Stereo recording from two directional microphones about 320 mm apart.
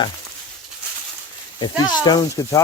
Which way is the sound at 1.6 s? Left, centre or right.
Centre.